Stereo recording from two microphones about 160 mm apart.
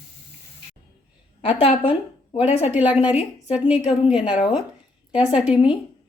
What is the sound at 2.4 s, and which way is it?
Speech, 40° left (ahead or behind).